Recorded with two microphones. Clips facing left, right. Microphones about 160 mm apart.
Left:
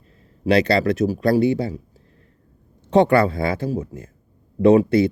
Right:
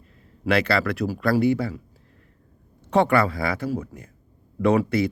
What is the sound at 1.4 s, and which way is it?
Speech, 30° left (ahead or behind).